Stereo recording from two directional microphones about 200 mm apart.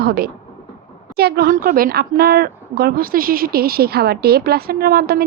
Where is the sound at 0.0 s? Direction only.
50° right (ahead or behind).